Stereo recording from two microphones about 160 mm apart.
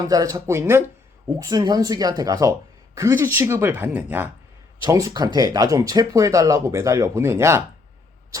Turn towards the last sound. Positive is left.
turn(degrees=-15)  # may be behind; listen again after turning